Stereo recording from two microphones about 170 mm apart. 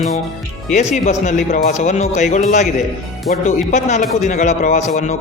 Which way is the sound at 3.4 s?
45° left (ahead or behind).